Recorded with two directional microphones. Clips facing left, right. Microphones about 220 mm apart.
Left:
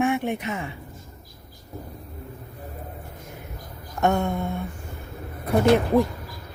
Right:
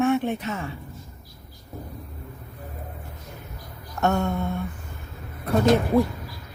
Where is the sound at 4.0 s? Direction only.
15° left (ahead or behind).